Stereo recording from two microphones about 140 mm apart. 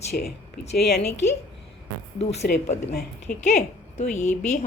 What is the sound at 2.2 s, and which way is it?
A woman's voice, 50° left (ahead or behind).